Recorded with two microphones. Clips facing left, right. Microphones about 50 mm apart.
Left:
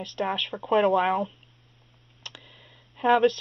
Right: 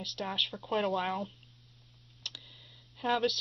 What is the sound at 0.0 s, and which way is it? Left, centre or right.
Speech, left.